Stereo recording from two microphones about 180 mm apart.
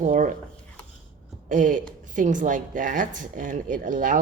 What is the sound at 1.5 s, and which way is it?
A woman's voice, 45° right (ahead or behind).